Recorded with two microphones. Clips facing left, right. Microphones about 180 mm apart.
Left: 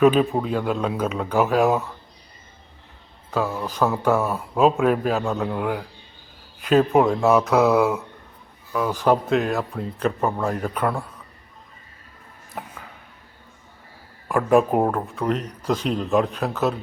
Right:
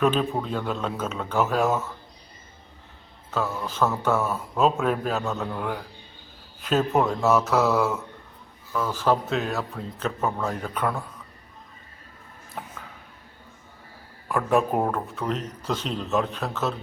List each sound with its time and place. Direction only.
0.0 s speech: 10° left (ahead or behind)
3.3 s speech: 15° left (ahead or behind)
7.3 s speech: centre (ahead or behind)
8.7 s speech: 15° left (ahead or behind)
9.3 s speech: centre (ahead or behind)
12.6 s speech: 5° left (ahead or behind)
14.3 s speech: 5° left (ahead or behind)